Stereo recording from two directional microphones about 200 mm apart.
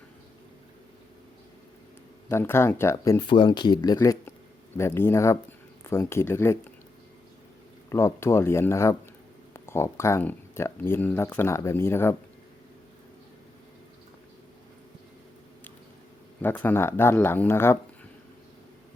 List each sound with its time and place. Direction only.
2.3 s speech: 10° left (ahead or behind)
7.9 s speech: 15° left (ahead or behind)
16.4 s speech: 10° left (ahead or behind)